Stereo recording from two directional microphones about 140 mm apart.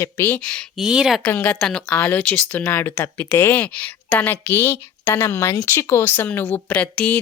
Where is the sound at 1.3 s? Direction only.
10° left (ahead or behind).